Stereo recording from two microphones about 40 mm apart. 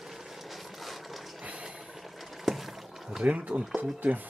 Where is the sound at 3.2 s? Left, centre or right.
Right.